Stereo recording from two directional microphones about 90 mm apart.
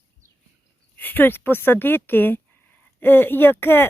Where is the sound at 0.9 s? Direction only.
20° left (ahead or behind).